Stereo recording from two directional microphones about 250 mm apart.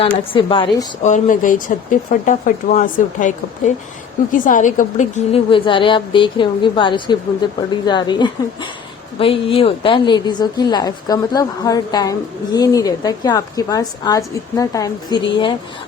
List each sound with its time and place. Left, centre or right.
0.0 s a woman's voice: centre